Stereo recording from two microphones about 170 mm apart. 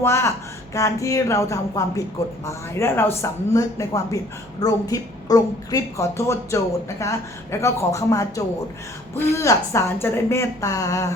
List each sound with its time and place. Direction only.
0.0 s a woman's voice: 15° left (ahead or behind)